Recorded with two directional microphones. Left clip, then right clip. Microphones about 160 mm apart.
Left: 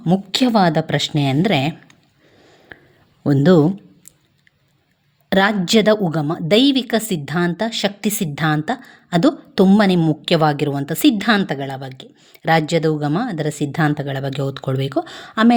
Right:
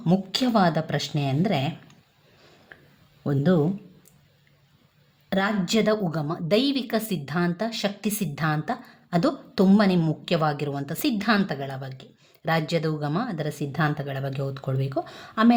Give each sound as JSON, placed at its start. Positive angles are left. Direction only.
{"t": 0.3, "sound": "speech", "side_deg": 40}
{"t": 3.2, "sound": "speech", "side_deg": 55}
{"t": 5.3, "sound": "a woman's voice", "side_deg": 50}